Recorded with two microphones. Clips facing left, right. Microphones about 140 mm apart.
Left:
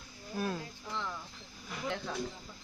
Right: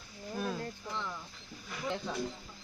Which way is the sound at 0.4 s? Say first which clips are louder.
Left 1 dB; 5° left (ahead or behind).